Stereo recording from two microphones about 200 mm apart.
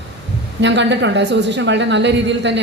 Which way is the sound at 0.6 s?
60° right (ahead or behind).